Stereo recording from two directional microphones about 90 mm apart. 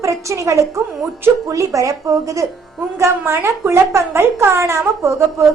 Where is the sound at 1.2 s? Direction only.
35° right (ahead or behind).